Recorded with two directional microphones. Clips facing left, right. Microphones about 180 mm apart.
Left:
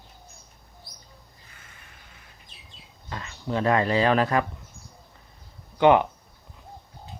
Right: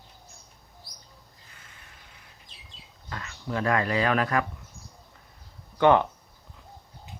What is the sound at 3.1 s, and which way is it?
Speech, 25° left (ahead or behind).